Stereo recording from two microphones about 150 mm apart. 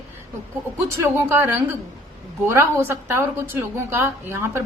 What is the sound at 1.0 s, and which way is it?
A woman's voice, 15° right (ahead or behind).